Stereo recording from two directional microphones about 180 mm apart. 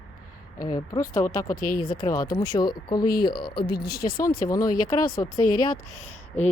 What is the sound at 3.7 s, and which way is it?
Speech, 60° left (ahead or behind).